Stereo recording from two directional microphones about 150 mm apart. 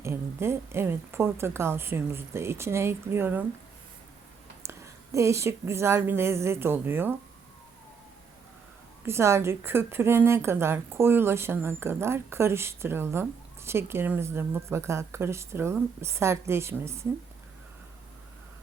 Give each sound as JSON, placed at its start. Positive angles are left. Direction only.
{"t": 0.0, "sound": "a woman's voice", "side_deg": -15}
{"t": 4.6, "sound": "a woman's voice", "side_deg": -20}
{"t": 9.0, "sound": "a woman's voice", "side_deg": -15}